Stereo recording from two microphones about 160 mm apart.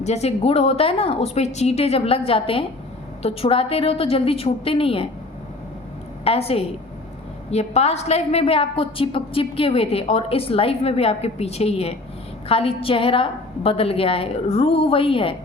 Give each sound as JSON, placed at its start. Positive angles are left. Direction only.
{"t": 0.0, "sound": "a woman's voice", "side_deg": 40}
{"t": 6.2, "sound": "a woman's voice", "side_deg": 40}